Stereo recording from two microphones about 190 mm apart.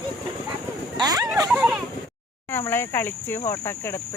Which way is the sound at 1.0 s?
20° right (ahead or behind).